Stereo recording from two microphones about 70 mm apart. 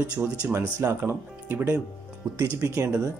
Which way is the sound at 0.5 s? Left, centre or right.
Right.